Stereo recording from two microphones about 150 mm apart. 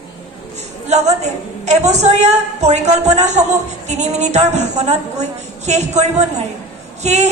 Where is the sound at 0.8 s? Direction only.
45° right (ahead or behind).